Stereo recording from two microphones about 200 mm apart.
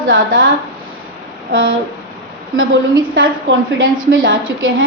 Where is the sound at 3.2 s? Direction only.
75° right (ahead or behind).